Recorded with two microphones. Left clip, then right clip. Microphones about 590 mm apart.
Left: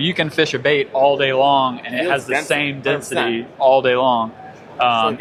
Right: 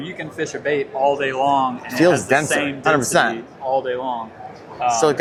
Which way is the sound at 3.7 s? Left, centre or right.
Left.